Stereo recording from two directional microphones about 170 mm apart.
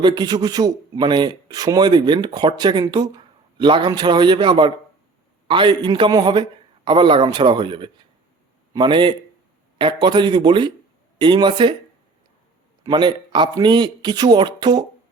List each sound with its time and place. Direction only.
0.0 s a man's voice: 25° right (ahead or behind)
12.8 s speech: 25° right (ahead or behind)